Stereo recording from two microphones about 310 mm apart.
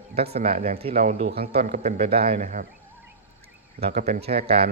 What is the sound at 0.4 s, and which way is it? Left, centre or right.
Speech, right.